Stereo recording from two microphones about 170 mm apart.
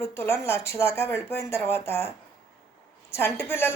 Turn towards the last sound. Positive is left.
turn(degrees=15)  # may be behind; listen again after turning